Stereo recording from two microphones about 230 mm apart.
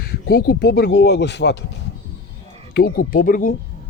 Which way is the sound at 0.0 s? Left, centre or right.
Left.